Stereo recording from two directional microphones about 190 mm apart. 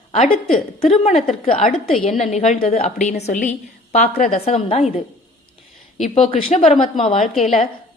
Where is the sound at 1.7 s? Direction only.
30° left (ahead or behind).